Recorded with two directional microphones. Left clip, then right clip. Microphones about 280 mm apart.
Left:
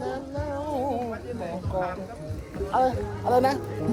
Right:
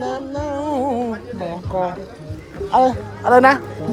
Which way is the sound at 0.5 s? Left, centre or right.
Right.